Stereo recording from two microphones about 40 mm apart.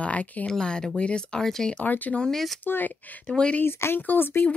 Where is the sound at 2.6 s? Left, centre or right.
Left.